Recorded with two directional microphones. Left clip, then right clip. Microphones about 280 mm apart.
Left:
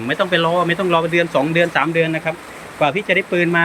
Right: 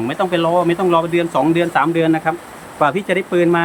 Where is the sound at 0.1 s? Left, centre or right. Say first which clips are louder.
Left 1 dB; centre.